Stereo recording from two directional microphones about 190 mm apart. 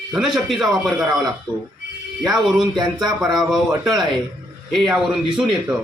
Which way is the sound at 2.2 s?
Centre (ahead or behind).